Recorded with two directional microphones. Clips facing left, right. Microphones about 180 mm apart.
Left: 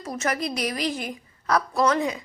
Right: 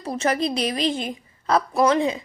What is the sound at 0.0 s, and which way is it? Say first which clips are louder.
A woman's voice: right 4 dB; 30° right (ahead or behind).